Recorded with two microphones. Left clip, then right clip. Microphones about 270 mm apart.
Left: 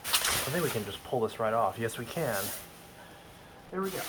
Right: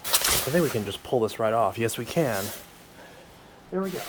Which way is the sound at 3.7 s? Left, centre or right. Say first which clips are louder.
Right 5 dB; right.